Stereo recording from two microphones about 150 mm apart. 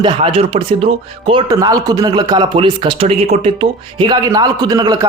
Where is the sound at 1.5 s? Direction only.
25° right (ahead or behind).